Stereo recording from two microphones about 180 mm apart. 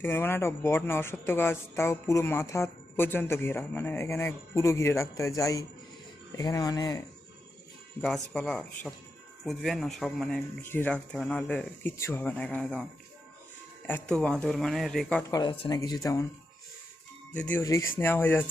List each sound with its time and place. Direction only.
0.0 s speech: 15° left (ahead or behind)
8.0 s speech: centre (ahead or behind)
13.8 s speech: 5° left (ahead or behind)
15.3 s speech: 25° left (ahead or behind)
17.3 s speech: 5° left (ahead or behind)